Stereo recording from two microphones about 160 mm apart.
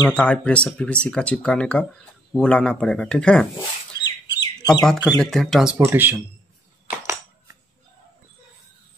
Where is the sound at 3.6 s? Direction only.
25° left (ahead or behind).